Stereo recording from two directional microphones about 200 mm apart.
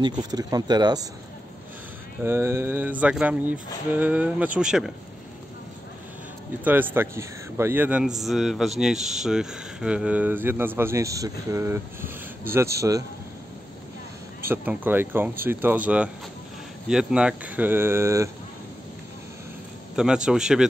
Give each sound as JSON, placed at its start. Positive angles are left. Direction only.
{"t": 0.0, "sound": "speech", "side_deg": -20}
{"t": 2.2, "sound": "a man's voice", "side_deg": -10}
{"t": 6.6, "sound": "a man's voice", "side_deg": -10}
{"t": 14.5, "sound": "a man's voice", "side_deg": -10}
{"t": 20.2, "sound": "speech", "side_deg": -5}